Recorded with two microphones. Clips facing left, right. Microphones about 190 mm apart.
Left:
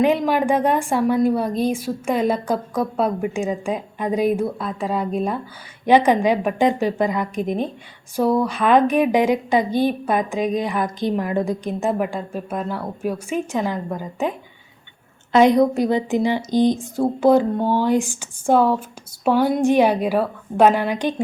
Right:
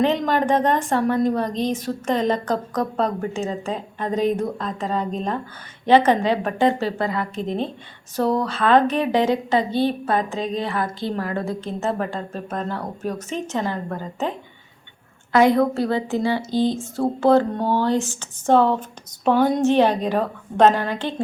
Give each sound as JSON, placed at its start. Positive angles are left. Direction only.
{"t": 0.0, "sound": "a woman's voice", "side_deg": 10}